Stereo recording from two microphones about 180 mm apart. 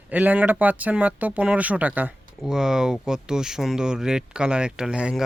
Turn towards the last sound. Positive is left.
turn(degrees=-5)  # may be behind; listen again after turning